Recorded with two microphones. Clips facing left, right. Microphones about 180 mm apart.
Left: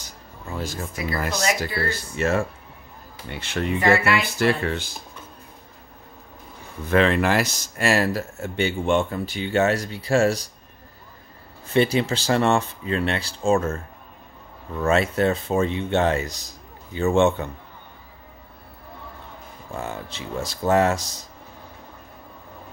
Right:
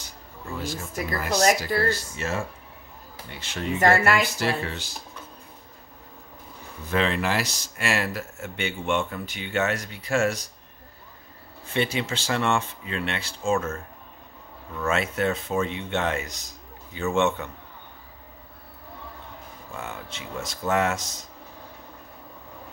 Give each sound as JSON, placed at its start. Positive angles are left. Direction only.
{"t": 0.6, "sound": "speech", "side_deg": 45}
{"t": 1.3, "sound": "speech", "side_deg": -45}
{"t": 2.1, "sound": "speech", "side_deg": 55}
{"t": 3.8, "sound": "speech", "side_deg": -45}
{"t": 4.4, "sound": "speech", "side_deg": 55}
{"t": 6.9, "sound": "speech", "side_deg": 60}
{"t": 11.7, "sound": "speech", "side_deg": 35}
{"t": 19.8, "sound": "speech", "side_deg": 35}